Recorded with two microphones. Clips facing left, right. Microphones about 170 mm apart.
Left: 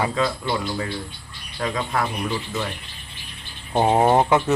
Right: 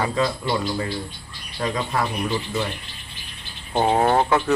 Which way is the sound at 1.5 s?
Centre (ahead or behind).